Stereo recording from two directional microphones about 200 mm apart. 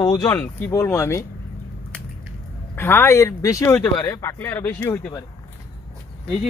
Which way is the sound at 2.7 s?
10° left (ahead or behind).